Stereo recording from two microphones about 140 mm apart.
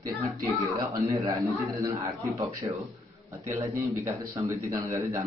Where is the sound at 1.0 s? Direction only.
25° right (ahead or behind).